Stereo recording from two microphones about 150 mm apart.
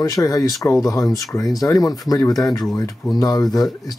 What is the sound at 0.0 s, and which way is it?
Speech, 20° left (ahead or behind).